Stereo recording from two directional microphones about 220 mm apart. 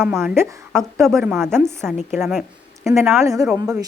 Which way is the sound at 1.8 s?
Centre (ahead or behind).